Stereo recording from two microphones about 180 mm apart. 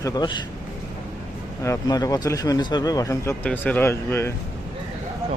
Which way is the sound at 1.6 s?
15° left (ahead or behind).